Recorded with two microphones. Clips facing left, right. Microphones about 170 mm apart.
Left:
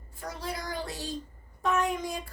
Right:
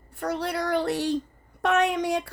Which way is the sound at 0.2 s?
65° right (ahead or behind).